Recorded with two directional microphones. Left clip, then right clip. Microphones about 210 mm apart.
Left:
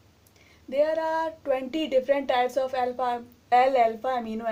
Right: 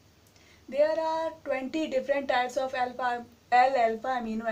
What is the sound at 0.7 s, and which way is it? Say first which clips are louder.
Speech: left 2 dB; 45° left (ahead or behind).